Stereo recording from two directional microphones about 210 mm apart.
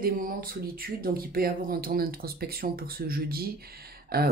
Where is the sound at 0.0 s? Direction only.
45° right (ahead or behind).